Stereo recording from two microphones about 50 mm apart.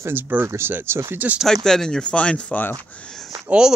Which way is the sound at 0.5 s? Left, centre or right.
Right.